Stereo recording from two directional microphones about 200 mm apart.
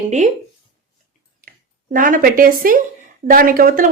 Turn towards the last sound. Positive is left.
turn(degrees=-45)  # may be behind; listen again after turning